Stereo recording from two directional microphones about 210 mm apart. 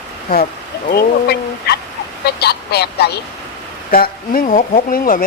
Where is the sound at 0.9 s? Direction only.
50° left (ahead or behind).